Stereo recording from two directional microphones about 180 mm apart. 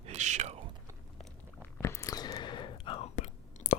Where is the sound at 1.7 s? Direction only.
15° left (ahead or behind).